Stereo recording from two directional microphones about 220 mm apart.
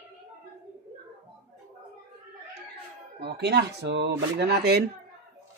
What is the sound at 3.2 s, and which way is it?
Speech, 50° right (ahead or behind).